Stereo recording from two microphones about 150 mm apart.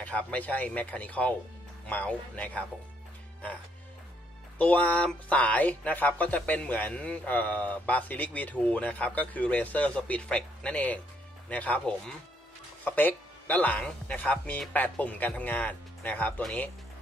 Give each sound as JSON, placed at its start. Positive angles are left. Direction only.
{"t": 0.0, "sound": "speech", "side_deg": 10}
{"t": 4.6, "sound": "speech", "side_deg": 10}